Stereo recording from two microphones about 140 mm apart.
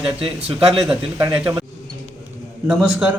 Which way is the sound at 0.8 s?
10° right (ahead or behind).